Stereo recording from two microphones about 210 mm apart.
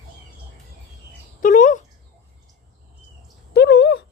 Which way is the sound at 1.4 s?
40° left (ahead or behind).